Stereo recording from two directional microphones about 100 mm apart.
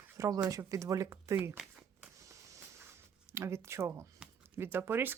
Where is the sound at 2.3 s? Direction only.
30° right (ahead or behind).